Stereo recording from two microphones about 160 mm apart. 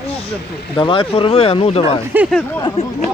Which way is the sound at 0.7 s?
35° left (ahead or behind).